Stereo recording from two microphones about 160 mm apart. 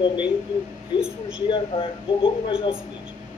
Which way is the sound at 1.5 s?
35° left (ahead or behind).